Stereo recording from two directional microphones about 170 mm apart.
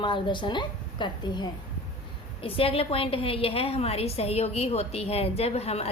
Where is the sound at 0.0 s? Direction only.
30° left (ahead or behind).